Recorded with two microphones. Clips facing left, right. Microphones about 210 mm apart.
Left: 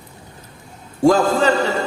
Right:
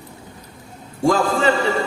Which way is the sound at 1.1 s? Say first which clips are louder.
Left 3 dB; 40° left (ahead or behind).